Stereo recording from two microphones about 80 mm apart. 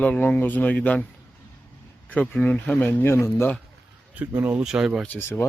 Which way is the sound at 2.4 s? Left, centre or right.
Centre.